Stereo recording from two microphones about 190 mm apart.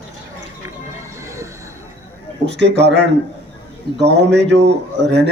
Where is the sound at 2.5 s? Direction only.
65° right (ahead or behind).